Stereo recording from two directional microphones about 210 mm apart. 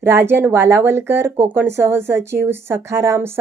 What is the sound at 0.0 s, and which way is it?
A woman's voice, 10° right (ahead or behind).